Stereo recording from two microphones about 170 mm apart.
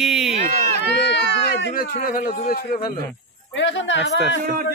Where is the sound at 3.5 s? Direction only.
90° left.